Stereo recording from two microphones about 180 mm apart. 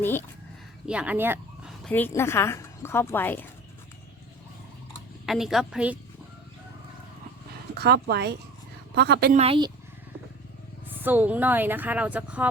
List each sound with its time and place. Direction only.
0.0 s speech: 10° left (ahead or behind)
0.9 s speech: 10° right (ahead or behind)
1.8 s speech: 10° left (ahead or behind)
5.2 s a woman's voice: centre (ahead or behind)
7.8 s speech: 65° right (ahead or behind)
9.3 s speech: 35° right (ahead or behind)
10.8 s speech: 10° right (ahead or behind)